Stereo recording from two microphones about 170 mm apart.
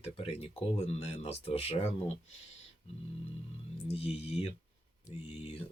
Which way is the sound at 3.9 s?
35° left (ahead or behind).